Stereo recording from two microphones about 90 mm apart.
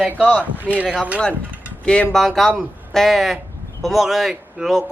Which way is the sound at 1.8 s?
10° left (ahead or behind).